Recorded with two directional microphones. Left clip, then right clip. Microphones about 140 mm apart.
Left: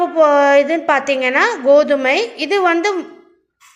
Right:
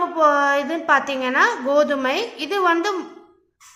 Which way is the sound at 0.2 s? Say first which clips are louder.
Left 7 dB; 25° left (ahead or behind).